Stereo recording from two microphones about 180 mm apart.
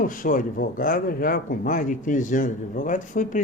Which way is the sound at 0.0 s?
50° left (ahead or behind).